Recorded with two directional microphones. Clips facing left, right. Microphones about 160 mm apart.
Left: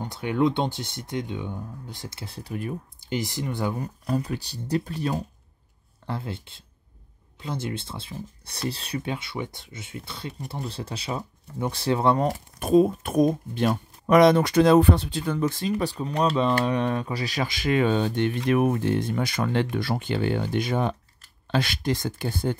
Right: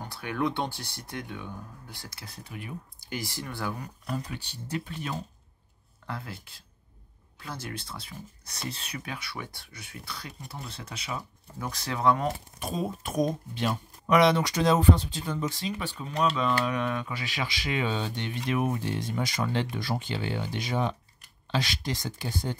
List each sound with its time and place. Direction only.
0.0 s speech: 20° left (ahead or behind); by 5.2 s 40° left (ahead or behind)
6.0 s speech: 30° left (ahead or behind)
12.5 s speech: 55° left (ahead or behind)